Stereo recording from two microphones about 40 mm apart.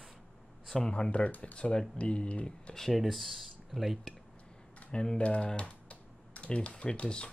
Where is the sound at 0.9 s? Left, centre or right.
Left.